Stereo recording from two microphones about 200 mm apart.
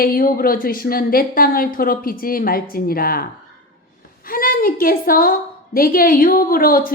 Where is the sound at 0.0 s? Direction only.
45° left (ahead or behind).